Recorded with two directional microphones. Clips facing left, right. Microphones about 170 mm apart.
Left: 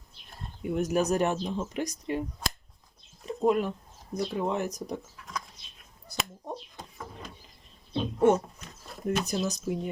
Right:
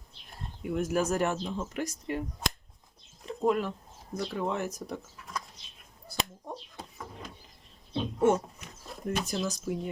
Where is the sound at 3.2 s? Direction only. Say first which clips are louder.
Left 2 dB; 20° left (ahead or behind).